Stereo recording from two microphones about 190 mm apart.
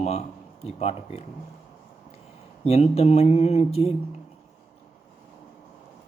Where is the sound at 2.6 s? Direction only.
30° left (ahead or behind).